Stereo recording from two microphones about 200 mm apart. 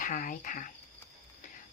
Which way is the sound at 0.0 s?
40° left (ahead or behind).